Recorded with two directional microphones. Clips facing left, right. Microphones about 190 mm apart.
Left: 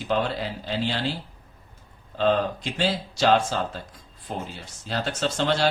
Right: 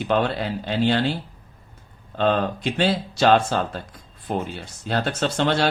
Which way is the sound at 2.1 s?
60° right (ahead or behind).